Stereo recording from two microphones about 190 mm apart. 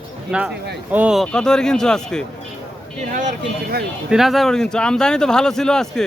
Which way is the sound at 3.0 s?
40° right (ahead or behind).